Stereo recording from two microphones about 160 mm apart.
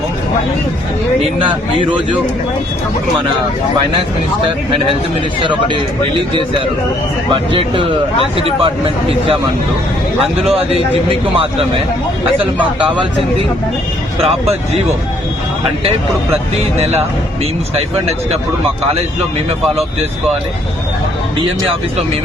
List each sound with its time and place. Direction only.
5.4 s speech: 30° right (ahead or behind)
7.3 s speech: 30° right (ahead or behind)
10.4 s speech: 40° right (ahead or behind)
16.7 s speech: 40° right (ahead or behind)